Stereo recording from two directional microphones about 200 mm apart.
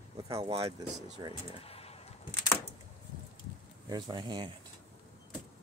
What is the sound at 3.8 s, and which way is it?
Speech, 20° right (ahead or behind).